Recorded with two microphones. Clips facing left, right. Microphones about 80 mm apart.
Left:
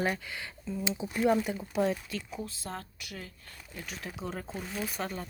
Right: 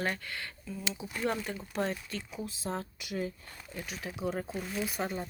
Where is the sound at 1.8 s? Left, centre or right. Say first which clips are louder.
Left 4 dB; centre.